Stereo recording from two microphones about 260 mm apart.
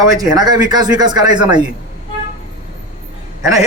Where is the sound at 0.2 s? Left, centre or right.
Centre.